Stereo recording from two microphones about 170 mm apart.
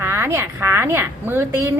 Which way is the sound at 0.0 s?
15° right (ahead or behind).